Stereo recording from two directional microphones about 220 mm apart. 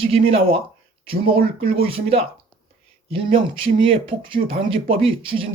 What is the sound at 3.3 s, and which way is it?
Speech, 25° right (ahead or behind).